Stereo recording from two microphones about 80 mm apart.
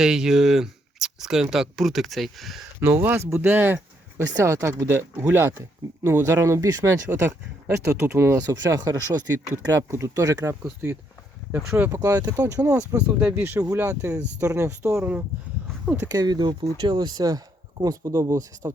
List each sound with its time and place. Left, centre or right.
0.0 s speech: centre
2.8 s speech: right
4.2 s speech: right
8.4 s speech: right
11.5 s speech: right
11.9 s speech: right
13.0 s speech: centre
13.7 s speech: right
16.1 s speech: right